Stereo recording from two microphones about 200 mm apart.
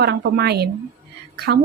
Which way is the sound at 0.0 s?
55° right (ahead or behind).